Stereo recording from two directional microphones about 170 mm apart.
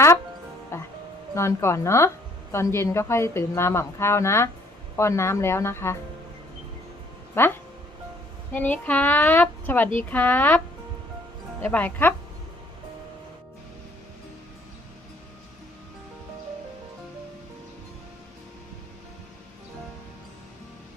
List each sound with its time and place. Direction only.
0.7 s music: 15° left (ahead or behind)
1.3 s a woman's voice: 15° left (ahead or behind)
7.3 s a woman's voice: 15° left (ahead or behind)
11.6 s a woman's voice: 10° left (ahead or behind)